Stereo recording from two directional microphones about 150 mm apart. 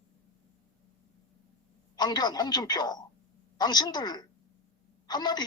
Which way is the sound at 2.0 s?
25° left (ahead or behind).